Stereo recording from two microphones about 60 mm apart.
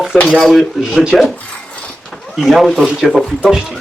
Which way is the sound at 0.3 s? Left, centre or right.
Centre.